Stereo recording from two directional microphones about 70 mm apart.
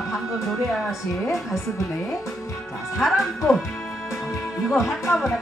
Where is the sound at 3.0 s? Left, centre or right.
Centre.